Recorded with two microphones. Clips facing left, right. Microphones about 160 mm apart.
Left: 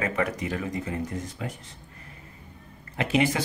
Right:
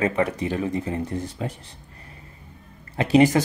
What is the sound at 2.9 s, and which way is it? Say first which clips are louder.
Speech: right 7 dB; 35° right (ahead or behind).